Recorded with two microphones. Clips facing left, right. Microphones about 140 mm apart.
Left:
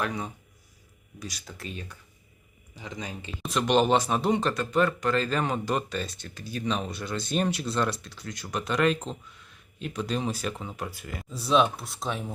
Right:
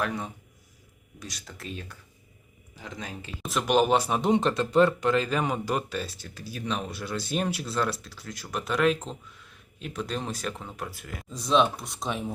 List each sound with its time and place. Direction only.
0.0 s speech: centre (ahead or behind); by 5.1 s 25° right (ahead or behind)
5.1 s speech: 15° right (ahead or behind)